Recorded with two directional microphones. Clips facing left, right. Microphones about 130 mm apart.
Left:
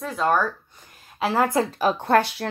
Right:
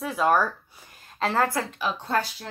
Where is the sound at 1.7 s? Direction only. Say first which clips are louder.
Left 7 dB; 45° left (ahead or behind).